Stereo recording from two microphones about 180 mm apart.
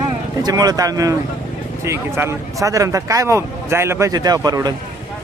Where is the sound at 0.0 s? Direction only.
20° right (ahead or behind).